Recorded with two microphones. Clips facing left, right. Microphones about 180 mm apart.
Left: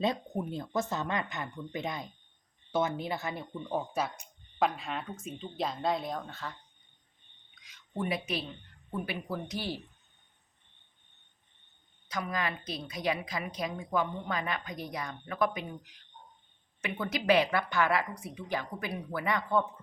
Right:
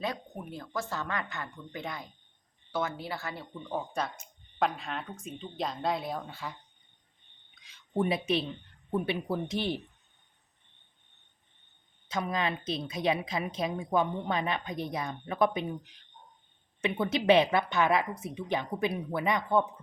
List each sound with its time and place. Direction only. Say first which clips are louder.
0.0 s speech: left 5 dB; 25° left (ahead or behind); by 6.6 s 10° right (ahead or behind)
7.6 s a woman's voice: right 6 dB; 30° right (ahead or behind)
12.0 s a woman's voice: right 3 dB; 25° right (ahead or behind)